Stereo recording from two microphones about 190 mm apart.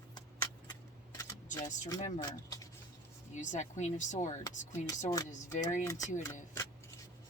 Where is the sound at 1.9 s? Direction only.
40° left (ahead or behind).